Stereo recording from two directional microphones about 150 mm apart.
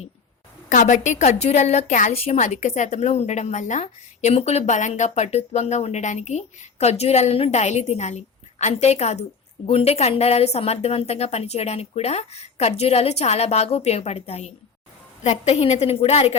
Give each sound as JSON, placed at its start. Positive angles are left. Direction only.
{"t": 0.7, "sound": "a woman's voice", "side_deg": 55}